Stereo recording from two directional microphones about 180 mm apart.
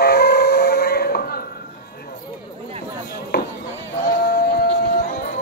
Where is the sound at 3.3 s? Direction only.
65° left (ahead or behind).